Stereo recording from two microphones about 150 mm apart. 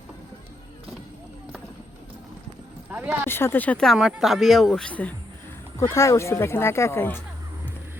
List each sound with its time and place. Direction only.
2.9 s a sound: 10° right (ahead or behind)
3.2 s speech: 15° left (ahead or behind)
5.9 s speech: 20° left (ahead or behind)